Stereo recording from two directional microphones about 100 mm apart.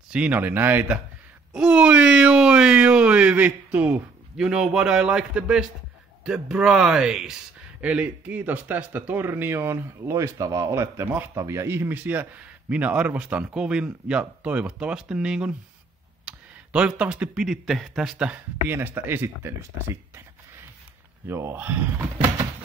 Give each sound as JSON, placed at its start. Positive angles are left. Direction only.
{"t": 0.1, "sound": "speech", "side_deg": -15}
{"t": 1.5, "sound": "speech", "side_deg": -10}
{"t": 18.7, "sound": "speech", "side_deg": -20}
{"t": 21.3, "sound": "speech", "side_deg": -25}